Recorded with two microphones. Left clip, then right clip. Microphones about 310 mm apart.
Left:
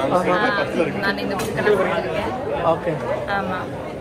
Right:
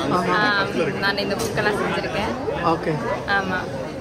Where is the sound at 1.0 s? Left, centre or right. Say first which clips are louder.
Even; right.